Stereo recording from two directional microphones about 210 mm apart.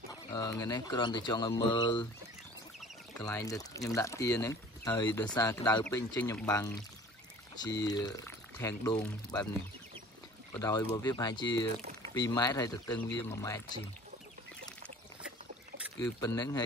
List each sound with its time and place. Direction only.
0.3 s speech: 15° left (ahead or behind)
3.3 s speech: 15° left (ahead or behind)
10.5 s speech: 15° left (ahead or behind)
16.0 s speech: 15° left (ahead or behind)